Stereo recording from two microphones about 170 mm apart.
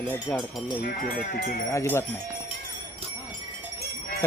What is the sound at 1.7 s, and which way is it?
Speech, 15° left (ahead or behind).